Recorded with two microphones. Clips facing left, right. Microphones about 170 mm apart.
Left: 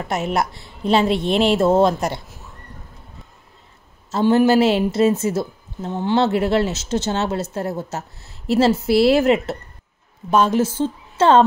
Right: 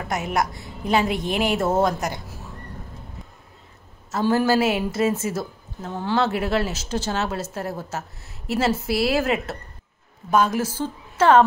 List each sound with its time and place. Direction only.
0.1 s a woman's voice: 25° left (ahead or behind)
4.1 s a woman's voice: 25° left (ahead or behind)